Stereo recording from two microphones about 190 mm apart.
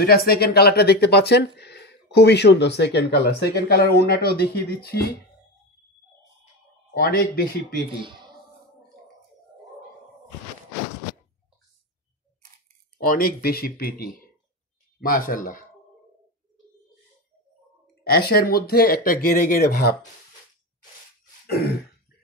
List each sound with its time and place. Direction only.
0.0 s speech: 55° left (ahead or behind)
6.9 s speech: 55° left (ahead or behind)
13.0 s speech: 50° left (ahead or behind)
18.0 s speech: 55° left (ahead or behind)
21.5 s throat clearing: 55° left (ahead or behind)